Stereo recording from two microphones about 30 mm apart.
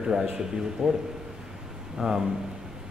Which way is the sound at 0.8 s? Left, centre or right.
Centre.